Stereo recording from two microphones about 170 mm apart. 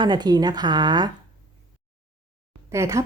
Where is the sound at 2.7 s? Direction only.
15° right (ahead or behind).